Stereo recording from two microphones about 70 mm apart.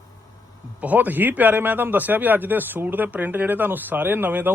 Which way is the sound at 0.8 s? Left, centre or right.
Right.